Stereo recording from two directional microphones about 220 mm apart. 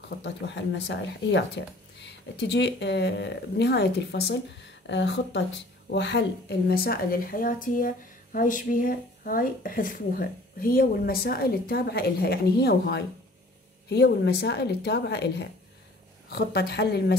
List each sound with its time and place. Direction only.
0.2 s a woman's voice: 55° left (ahead or behind)